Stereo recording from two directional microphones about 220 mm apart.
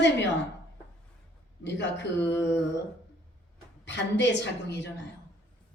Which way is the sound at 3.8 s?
55° left (ahead or behind).